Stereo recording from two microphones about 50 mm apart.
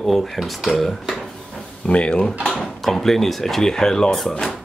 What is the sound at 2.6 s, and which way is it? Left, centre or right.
Speech, centre.